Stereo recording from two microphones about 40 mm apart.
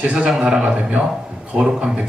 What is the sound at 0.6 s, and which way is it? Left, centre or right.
A man's voice, right.